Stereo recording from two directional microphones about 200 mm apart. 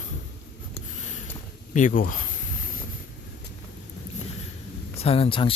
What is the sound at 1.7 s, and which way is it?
Speech, 40° left (ahead or behind).